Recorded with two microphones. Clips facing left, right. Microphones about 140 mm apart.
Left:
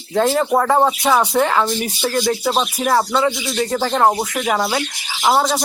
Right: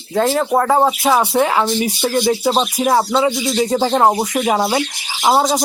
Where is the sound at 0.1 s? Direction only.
Centre (ahead or behind); by 4.8 s 20° right (ahead or behind).